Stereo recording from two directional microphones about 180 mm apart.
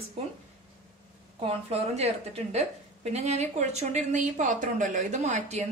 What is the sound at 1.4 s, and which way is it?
Speech, 35° right (ahead or behind).